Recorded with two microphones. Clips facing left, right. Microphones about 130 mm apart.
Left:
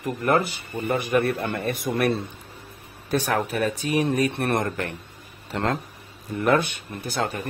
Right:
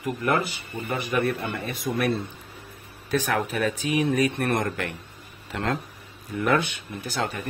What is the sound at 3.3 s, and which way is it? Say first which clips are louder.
A man's voice: left 2 dB; 40° left (ahead or behind).